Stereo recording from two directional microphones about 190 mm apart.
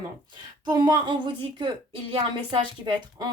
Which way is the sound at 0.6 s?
20° right (ahead or behind).